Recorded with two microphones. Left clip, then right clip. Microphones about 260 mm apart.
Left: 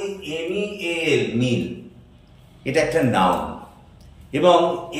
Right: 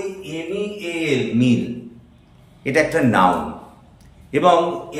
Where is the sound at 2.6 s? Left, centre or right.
Centre.